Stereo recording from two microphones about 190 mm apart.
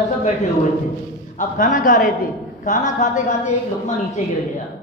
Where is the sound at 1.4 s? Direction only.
45° left (ahead or behind).